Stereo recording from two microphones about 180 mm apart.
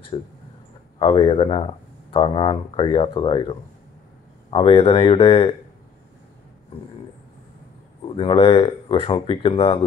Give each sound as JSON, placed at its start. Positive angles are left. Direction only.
{"t": 0.1, "sound": "speech", "side_deg": 30}
{"t": 8.2, "sound": "speech", "side_deg": 30}